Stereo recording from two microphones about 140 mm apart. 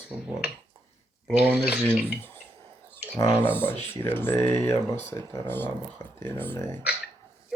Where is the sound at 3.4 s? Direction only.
15° left (ahead or behind).